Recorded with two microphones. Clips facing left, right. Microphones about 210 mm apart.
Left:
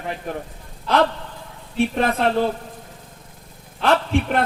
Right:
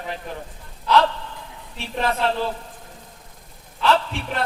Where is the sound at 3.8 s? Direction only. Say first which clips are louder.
Left 3 dB; 50° left (ahead or behind).